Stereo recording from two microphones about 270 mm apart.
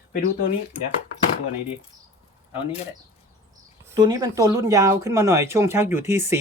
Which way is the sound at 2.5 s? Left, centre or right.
Centre.